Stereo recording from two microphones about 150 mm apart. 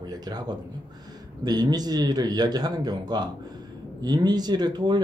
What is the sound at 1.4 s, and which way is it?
Speech, 25° right (ahead or behind).